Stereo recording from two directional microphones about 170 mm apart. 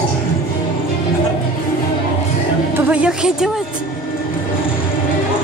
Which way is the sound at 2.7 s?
5° right (ahead or behind).